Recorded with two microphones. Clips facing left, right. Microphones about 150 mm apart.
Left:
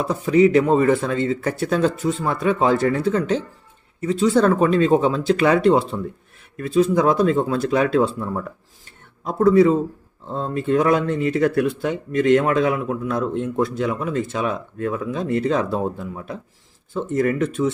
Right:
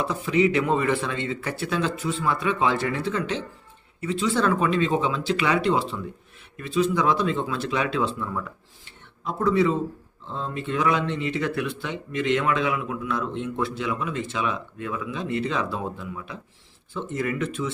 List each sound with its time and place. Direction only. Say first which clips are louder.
0.0 s speech: left 6 dB; 40° left (ahead or behind)